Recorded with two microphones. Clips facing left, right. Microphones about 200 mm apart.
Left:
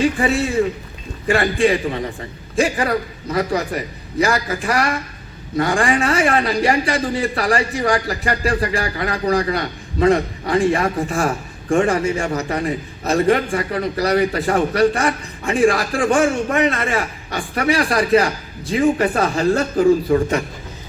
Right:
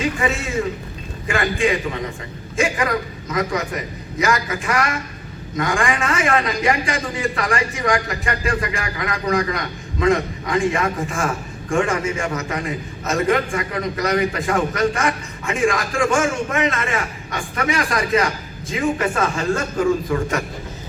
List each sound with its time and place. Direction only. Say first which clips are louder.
0.0 s a man's voice: left 5 dB; 35° left (ahead or behind)